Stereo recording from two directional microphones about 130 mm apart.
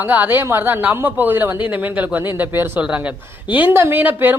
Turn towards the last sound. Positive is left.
turn(degrees=-15)  # may be behind; listen again after turning